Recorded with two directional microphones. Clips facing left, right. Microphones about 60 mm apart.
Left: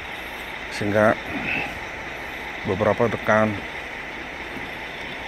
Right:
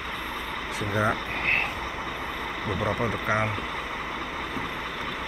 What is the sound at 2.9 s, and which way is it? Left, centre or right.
Speech, left.